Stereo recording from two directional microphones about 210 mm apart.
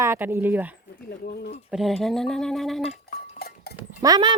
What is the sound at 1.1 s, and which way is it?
Speech, 50° left (ahead or behind).